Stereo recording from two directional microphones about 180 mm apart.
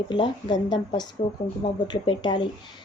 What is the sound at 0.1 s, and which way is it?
Speech, 25° left (ahead or behind).